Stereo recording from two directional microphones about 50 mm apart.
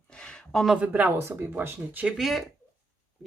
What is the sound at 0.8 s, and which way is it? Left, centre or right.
Speech, right.